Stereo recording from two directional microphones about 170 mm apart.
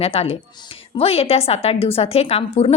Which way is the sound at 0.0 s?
35° left (ahead or behind).